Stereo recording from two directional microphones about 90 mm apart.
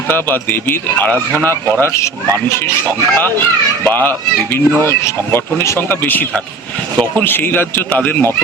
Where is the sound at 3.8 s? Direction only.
20° left (ahead or behind).